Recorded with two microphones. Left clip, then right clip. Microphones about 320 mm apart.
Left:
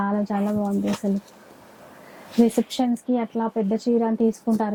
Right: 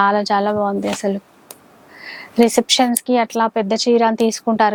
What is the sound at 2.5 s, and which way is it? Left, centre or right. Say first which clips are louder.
A woman's voice: right 9 dB; centre.